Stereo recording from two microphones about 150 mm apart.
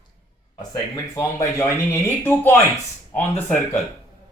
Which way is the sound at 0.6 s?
25° left (ahead or behind).